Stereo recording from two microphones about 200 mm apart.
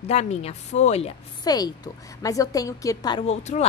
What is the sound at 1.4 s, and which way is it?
A woman's voice, 20° left (ahead or behind).